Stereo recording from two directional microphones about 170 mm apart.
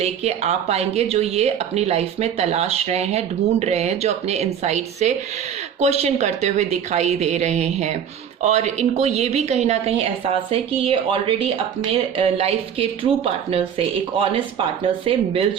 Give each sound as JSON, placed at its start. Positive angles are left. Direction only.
{"t": 0.0, "sound": "speech", "side_deg": -40}
{"t": 15.0, "sound": "speech", "side_deg": -30}